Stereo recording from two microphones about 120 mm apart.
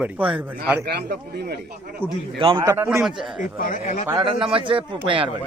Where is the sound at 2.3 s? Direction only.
45° right (ahead or behind).